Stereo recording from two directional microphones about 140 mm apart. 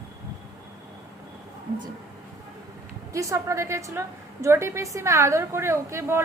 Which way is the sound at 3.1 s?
20° right (ahead or behind).